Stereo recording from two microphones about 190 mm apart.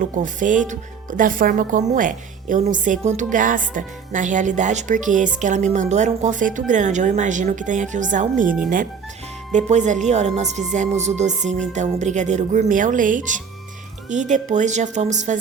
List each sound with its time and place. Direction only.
0.0 s speech: 45° right (ahead or behind)